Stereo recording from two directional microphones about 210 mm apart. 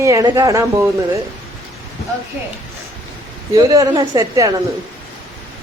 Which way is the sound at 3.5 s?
15° right (ahead or behind).